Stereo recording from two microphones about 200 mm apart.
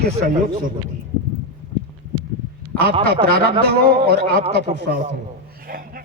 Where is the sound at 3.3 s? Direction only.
50° right (ahead or behind).